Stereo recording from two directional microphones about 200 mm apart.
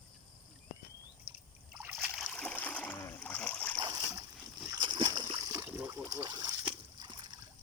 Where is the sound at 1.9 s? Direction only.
Centre (ahead or behind).